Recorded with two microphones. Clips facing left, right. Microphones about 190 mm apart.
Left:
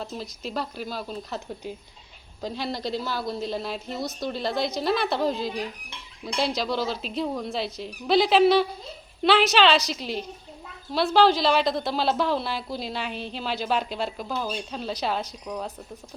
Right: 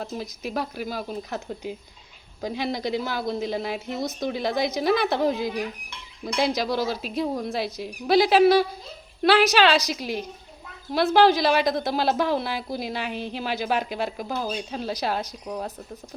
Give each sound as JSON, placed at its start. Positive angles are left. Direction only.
{"t": 0.1, "sound": "a woman's voice", "side_deg": -15}
{"t": 2.4, "sound": "a woman's voice", "side_deg": -15}